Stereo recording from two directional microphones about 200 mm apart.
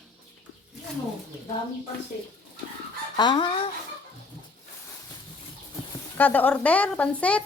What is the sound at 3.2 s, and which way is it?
Speech, 20° left (ahead or behind).